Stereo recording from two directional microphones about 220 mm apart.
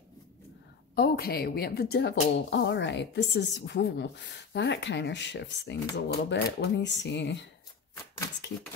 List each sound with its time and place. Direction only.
0.9 s speech: 45° left (ahead or behind)